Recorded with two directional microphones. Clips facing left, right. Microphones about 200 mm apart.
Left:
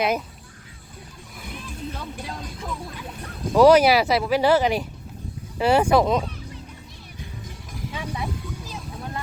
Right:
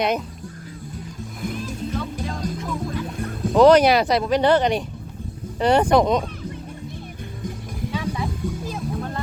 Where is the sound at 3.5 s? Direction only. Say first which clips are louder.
Right 1 dB; 5° left (ahead or behind).